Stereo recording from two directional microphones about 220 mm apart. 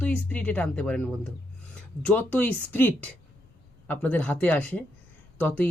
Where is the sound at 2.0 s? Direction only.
5° left (ahead or behind).